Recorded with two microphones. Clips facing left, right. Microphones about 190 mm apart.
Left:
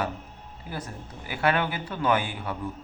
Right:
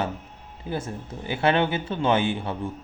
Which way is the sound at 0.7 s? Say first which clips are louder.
Right 6 dB; 25° right (ahead or behind).